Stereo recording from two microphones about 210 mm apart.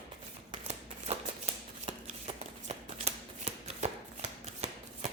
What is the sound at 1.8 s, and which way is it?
Shuffling cards, 30° right (ahead or behind).